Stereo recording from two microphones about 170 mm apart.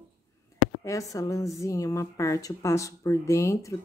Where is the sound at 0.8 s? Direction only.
20° left (ahead or behind).